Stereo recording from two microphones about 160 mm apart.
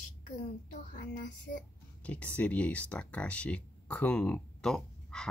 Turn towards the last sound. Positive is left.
turn(degrees=5)  # may be behind; listen again after turning